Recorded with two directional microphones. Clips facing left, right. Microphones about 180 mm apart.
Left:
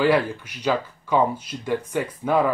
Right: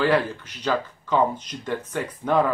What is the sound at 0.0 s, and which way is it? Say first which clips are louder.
Speech: left 2 dB; 10° left (ahead or behind).